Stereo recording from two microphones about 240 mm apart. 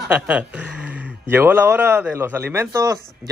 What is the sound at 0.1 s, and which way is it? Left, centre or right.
A man's voice, centre.